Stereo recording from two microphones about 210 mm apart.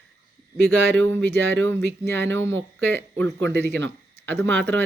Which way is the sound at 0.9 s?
10° left (ahead or behind).